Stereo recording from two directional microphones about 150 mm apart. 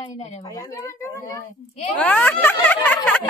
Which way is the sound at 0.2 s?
45° left (ahead or behind).